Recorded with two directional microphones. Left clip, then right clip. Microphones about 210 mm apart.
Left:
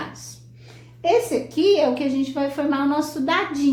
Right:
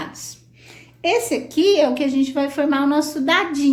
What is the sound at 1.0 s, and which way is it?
Speech, 35° right (ahead or behind).